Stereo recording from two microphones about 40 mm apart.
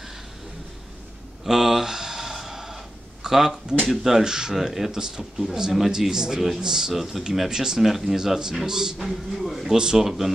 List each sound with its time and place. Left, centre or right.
1.4 s a sound: centre
3.3 s a man's voice: centre
4.6 s a man's voice: centre
6.9 s speech: centre
7.4 s a man's voice: centre
8.6 s a man's voice: centre
9.8 s speech: right
10.0 s a man's voice: centre